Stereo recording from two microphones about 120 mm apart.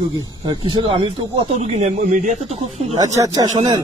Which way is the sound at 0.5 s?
45° right (ahead or behind).